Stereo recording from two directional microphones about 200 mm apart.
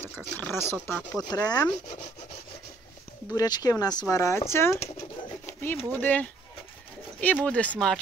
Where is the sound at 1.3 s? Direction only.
20° left (ahead or behind).